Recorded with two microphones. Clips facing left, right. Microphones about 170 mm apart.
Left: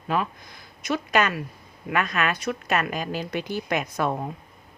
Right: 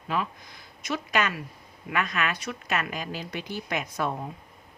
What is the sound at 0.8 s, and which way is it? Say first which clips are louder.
A woman's voice: left 4 dB; 55° left (ahead or behind).